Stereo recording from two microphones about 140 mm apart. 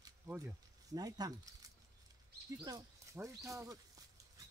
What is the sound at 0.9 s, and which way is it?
Speech, 25° right (ahead or behind).